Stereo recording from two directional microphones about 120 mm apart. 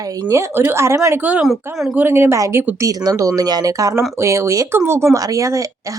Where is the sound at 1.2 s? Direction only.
10° right (ahead or behind).